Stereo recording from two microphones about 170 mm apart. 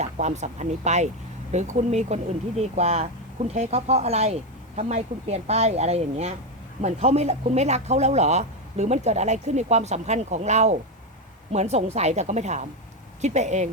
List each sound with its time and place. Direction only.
0.0 s speech: 40° right (ahead or behind)